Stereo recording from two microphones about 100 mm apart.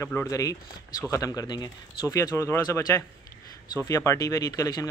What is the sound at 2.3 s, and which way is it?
Speech, 30° left (ahead or behind).